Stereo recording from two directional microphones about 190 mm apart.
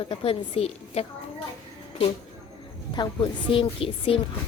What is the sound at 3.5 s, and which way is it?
Speech, 30° left (ahead or behind).